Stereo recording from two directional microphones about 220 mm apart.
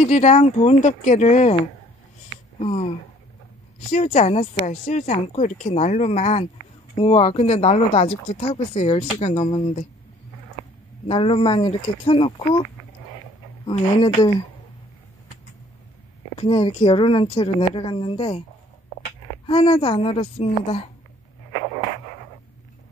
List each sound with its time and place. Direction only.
0.1 s a woman's voice: 30° left (ahead or behind)
2.6 s speech: 25° left (ahead or behind)
3.9 s a woman's voice: 30° left (ahead or behind)
11.1 s speech: 25° left (ahead or behind)
13.7 s speech: 20° left (ahead or behind)
16.3 s speech: 25° left (ahead or behind)
19.4 s speech: 25° left (ahead or behind)